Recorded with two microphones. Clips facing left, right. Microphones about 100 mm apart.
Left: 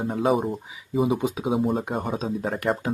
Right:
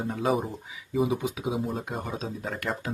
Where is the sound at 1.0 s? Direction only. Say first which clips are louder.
Left 5 dB; 30° left (ahead or behind).